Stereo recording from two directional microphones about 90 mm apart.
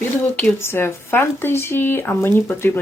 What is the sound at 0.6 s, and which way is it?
Speech, 25° left (ahead or behind).